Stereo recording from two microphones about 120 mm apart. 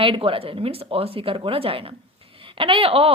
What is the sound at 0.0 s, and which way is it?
Speech, 50° right (ahead or behind).